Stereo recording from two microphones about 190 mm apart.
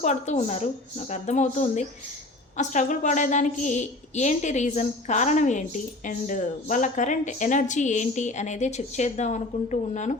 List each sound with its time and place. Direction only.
0.0 s a woman's voice: 35° left (ahead or behind)